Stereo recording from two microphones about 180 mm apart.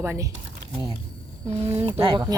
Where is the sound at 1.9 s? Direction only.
30° right (ahead or behind).